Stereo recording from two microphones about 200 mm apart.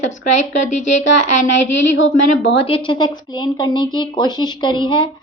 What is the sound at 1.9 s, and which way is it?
Speech, 70° left (ahead or behind).